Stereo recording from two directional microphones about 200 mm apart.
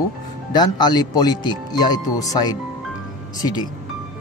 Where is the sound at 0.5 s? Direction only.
20° left (ahead or behind).